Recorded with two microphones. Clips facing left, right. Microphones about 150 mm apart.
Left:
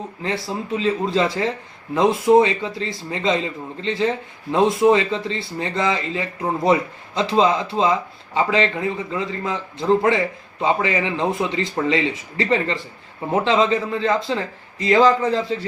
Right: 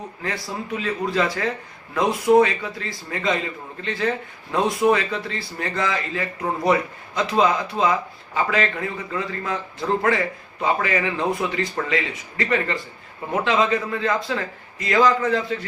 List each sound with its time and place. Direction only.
0.2 s a man's voice: 25° left (ahead or behind)
10.6 s a man's voice: 20° left (ahead or behind)